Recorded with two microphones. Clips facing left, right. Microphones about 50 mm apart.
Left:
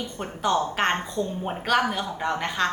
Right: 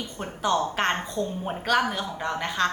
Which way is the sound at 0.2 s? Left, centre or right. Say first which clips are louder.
Left 1 dB; centre.